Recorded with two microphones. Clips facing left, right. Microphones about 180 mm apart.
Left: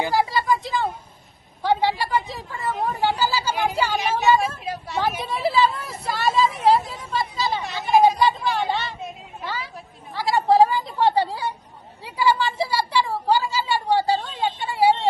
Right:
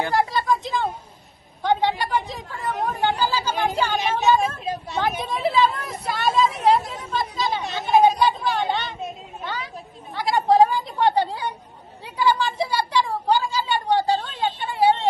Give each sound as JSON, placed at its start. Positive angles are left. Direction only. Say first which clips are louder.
{"t": 0.1, "sound": "a sound", "louder": "even", "side_deg": 0}
{"t": 1.6, "sound": "a woman's voice", "louder": "even", "side_deg": 5}
{"t": 4.6, "sound": "a woman's voice", "louder": "right 2 dB", "side_deg": -20}
{"t": 5.2, "sound": "a woman's voice", "louder": "even", "side_deg": 0}
{"t": 10.2, "sound": "a sound", "louder": "even", "side_deg": 5}
{"t": 14.4, "sound": "vehicle", "louder": "even", "side_deg": 10}